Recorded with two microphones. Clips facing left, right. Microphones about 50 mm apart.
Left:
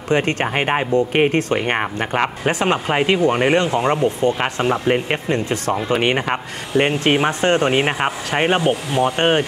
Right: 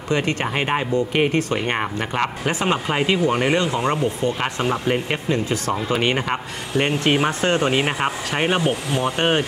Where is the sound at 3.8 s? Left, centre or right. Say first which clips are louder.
Left 4 dB; centre.